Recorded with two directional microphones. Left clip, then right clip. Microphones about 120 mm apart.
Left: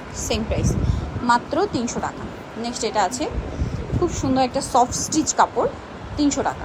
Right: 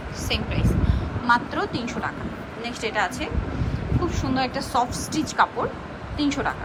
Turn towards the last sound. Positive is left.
turn(degrees=35)  # may be behind; listen again after turning